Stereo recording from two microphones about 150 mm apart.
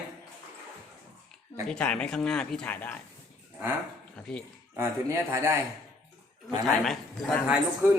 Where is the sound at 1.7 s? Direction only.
5° left (ahead or behind).